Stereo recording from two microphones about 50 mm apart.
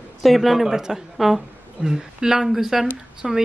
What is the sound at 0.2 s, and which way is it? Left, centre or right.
A woman's voice, centre.